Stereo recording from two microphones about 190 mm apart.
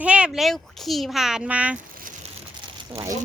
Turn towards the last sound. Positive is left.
turn(degrees=-15)  # may be behind; listen again after turning